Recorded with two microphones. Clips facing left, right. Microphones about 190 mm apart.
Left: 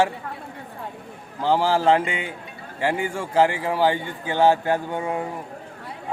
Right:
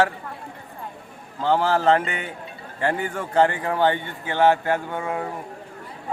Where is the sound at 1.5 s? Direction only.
10° left (ahead or behind).